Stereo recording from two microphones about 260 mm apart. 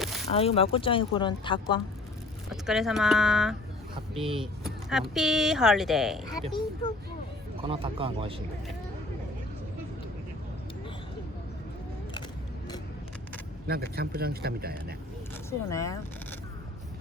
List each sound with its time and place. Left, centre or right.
0.0 s a sound: centre
0.3 s speech: left
2.5 s speech: centre
4.2 s speech: centre
4.6 s speech: centre
7.6 s speech: right
13.7 s speech: right
15.4 s speech: centre